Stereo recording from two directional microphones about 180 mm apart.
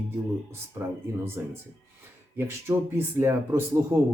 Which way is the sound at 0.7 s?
10° right (ahead or behind).